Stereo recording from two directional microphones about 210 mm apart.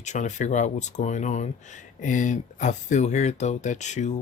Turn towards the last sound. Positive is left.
turn(degrees=35)  # may be behind; listen again after turning